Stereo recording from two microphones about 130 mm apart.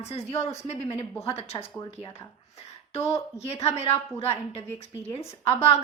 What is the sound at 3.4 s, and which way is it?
Speech, 55° left (ahead or behind).